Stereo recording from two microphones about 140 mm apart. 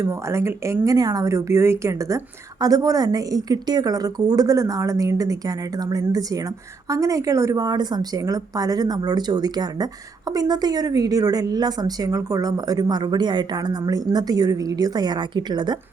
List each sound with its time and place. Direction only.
0.0 s a woman's voice: 20° right (ahead or behind)